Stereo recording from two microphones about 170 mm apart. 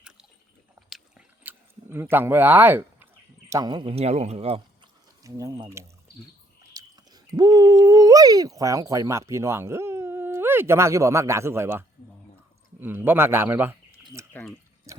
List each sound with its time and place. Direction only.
0.8 s biting: centre (ahead or behind)
1.5 s a sound: 15° right (ahead or behind)
3.5 s speech: 25° right (ahead or behind)
5.2 s speech: 20° right (ahead or behind)
6.6 s a sound: 20° right (ahead or behind)
12.8 s a man's voice: 10° right (ahead or behind)
14.0 s bird: 15° right (ahead or behind)
14.9 s drip: 20° right (ahead or behind)